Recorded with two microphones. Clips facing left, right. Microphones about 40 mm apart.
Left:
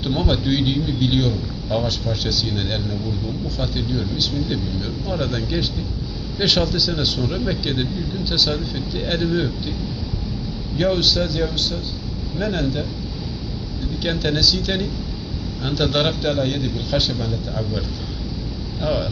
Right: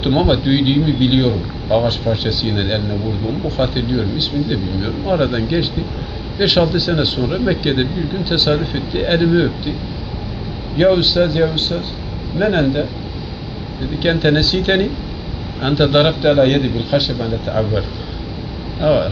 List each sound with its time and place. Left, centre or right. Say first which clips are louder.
0.0 s a man's voice: right 6 dB; right
10.8 s a man's voice: right 7 dB; right
13.9 s a man's voice: right 8 dB; right
16.3 s a man's voice: right 9 dB; right
16.7 s speech: right 5 dB; centre
17.6 s a man's voice: right 7 dB; right